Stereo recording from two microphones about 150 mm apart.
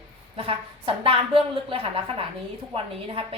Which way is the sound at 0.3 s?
35° right (ahead or behind).